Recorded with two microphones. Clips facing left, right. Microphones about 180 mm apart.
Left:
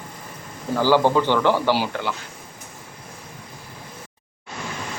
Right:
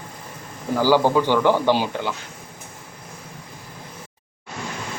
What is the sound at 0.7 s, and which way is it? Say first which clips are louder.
Speech: even; 10° right (ahead or behind).